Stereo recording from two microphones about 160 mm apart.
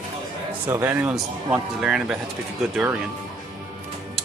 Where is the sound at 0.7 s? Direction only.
15° right (ahead or behind).